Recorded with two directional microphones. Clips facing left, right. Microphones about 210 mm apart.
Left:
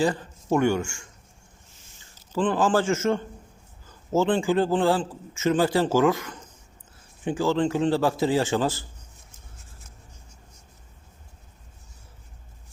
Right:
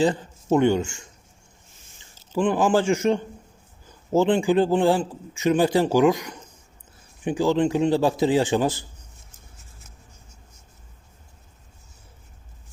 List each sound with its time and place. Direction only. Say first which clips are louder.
0.0 s speech: right 3 dB; 20° right (ahead or behind)
2.4 s a man's voice: right 2 dB; 15° right (ahead or behind)